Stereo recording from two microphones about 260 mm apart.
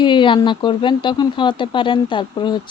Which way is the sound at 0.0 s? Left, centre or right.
Centre.